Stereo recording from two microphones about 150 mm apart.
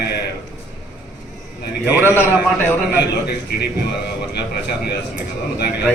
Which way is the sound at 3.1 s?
90° left.